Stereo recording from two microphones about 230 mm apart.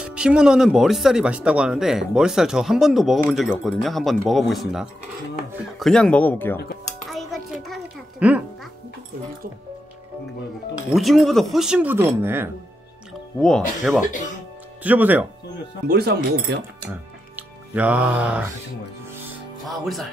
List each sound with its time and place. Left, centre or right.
0.0 s speech: centre
7.1 s a sound: centre
11.0 s speech: centre
13.4 s speech: centre
15.9 s speech: right
16.9 s music: centre
19.6 s speech: centre